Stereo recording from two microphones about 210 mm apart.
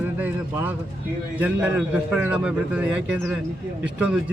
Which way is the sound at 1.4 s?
5° right (ahead or behind).